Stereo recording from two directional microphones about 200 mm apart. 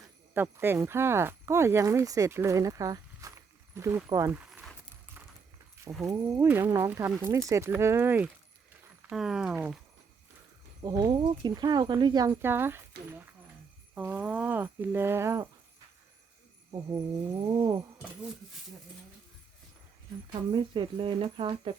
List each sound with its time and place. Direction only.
0.3 s speech: 10° right (ahead or behind)
4.4 s keys jangling: 5° right (ahead or behind)
6.1 s speech: 15° right (ahead or behind)
10.8 s speech: 20° right (ahead or behind)
12.3 s speech: 10° right (ahead or behind)
13.9 s speech: 10° right (ahead or behind)
17.4 s speech: 20° right (ahead or behind)
20.5 s speech: 25° right (ahead or behind)